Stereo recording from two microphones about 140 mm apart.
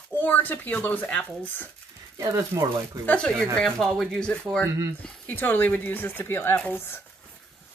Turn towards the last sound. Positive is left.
turn(degrees=15)  # may be behind; listen again after turning